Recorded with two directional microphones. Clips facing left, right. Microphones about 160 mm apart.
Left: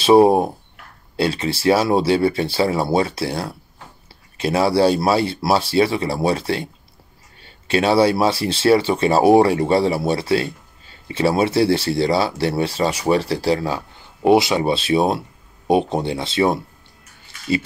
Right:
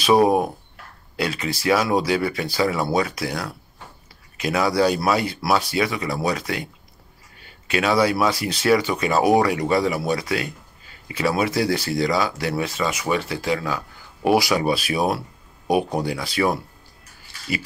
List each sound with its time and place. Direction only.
0.0 s speech: 30° left (ahead or behind)